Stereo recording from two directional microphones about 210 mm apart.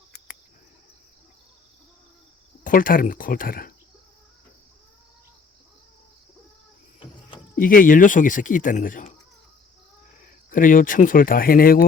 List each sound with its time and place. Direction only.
2.6 s speech: 40° left (ahead or behind)
7.5 s speech: 40° left (ahead or behind)
10.5 s speech: 40° left (ahead or behind)